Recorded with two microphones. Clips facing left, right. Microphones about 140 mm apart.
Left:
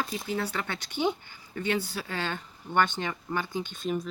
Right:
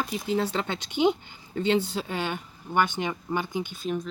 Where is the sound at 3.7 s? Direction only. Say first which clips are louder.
Right 1 dB; centre (ahead or behind).